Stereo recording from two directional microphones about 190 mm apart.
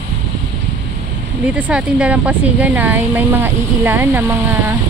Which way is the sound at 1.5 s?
5° right (ahead or behind).